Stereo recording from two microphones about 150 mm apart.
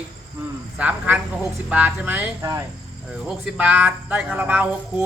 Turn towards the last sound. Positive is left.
turn(degrees=-10)  # may be behind; listen again after turning